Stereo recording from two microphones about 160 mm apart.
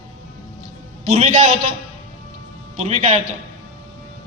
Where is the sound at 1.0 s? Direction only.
45° right (ahead or behind).